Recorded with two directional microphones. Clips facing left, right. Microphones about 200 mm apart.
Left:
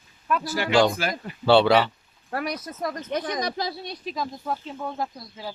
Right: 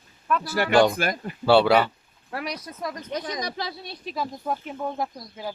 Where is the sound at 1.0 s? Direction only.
50° right (ahead or behind).